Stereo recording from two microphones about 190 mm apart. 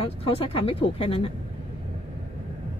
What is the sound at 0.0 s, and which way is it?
Speech, 30° left (ahead or behind).